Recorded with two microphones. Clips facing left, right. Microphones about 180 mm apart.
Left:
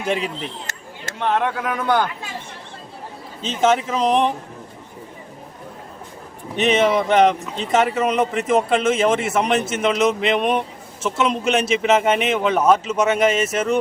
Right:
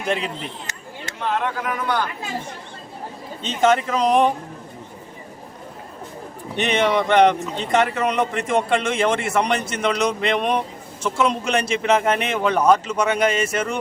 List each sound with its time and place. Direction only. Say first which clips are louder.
0.0 s speech: left 1 dB; 5° left (ahead or behind)
1.0 s speech: left 3 dB; 60° left (ahead or behind)
3.4 s a man's voice: even; 5° left (ahead or behind)
6.6 s a man's voice: left 2 dB; 5° left (ahead or behind)